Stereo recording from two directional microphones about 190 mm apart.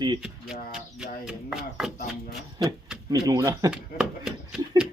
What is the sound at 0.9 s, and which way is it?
Chopping, 5° right (ahead or behind).